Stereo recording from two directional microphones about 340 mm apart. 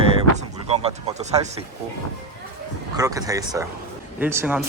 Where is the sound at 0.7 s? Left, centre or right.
Centre.